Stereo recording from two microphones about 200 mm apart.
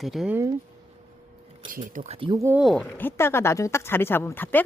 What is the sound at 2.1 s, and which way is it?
Speech, 20° right (ahead or behind).